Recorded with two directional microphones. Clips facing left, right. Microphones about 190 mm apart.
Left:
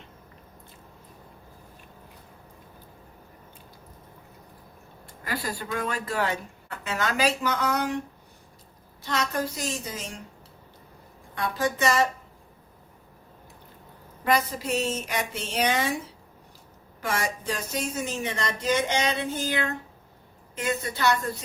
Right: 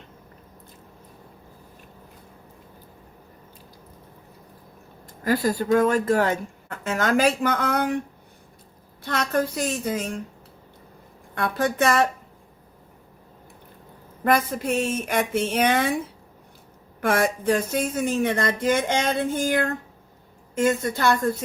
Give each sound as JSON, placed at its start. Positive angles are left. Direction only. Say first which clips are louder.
{"t": 5.2, "sound": "speech", "louder": "right 10 dB", "side_deg": -45}
{"t": 9.0, "sound": "a woman's voice", "louder": "right 4 dB", "side_deg": -55}
{"t": 11.3, "sound": "a woman's voice", "louder": "right 4 dB", "side_deg": -55}
{"t": 14.3, "sound": "speech", "louder": "right 3 dB", "side_deg": -55}
{"t": 17.0, "sound": "speech", "louder": "right 8 dB", "side_deg": -55}